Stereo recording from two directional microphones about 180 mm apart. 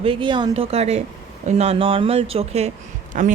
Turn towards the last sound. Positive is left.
turn(degrees=-45)  # may be behind; listen again after turning